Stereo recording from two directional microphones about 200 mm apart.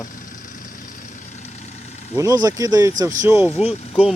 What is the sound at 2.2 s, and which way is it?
Speech, 15° right (ahead or behind).